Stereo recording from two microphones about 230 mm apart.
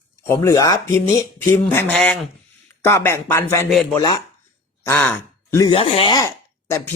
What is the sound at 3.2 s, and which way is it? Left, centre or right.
Speech, centre.